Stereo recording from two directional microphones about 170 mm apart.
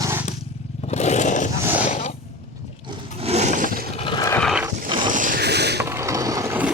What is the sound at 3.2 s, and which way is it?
Roar, 40° right (ahead or behind).